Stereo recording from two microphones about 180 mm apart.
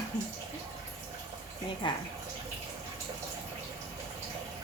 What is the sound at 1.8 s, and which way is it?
Speech, 25° left (ahead or behind).